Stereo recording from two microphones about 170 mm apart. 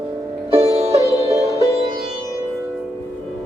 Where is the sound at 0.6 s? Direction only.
40° right (ahead or behind).